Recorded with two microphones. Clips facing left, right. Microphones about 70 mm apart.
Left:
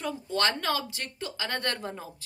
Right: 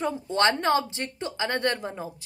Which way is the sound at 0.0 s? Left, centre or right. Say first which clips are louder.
Right 5 dB; right.